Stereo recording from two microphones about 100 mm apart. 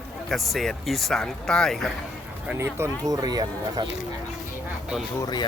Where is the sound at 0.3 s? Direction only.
5° left (ahead or behind).